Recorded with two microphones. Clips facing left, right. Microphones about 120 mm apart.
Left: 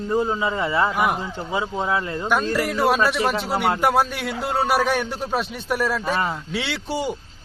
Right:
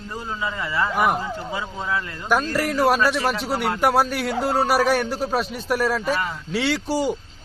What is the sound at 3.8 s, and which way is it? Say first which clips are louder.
Speech: right 2 dB; centre (ahead or behind).